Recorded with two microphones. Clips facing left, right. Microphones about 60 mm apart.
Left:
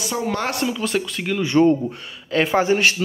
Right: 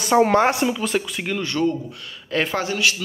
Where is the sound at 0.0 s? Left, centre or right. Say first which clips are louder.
Right 8 dB; right.